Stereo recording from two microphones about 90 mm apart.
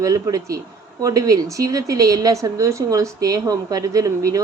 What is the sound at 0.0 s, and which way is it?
A woman's voice, 40° right (ahead or behind).